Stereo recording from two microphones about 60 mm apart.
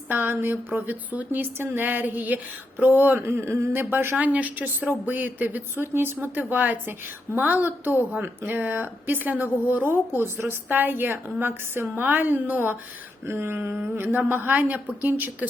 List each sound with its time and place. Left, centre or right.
0.1 s a woman's voice: right
4.2 s a woman's voice: right
13.2 s a woman's voice: right